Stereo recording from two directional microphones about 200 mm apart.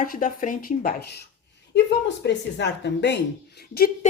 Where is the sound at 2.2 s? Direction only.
60° left (ahead or behind).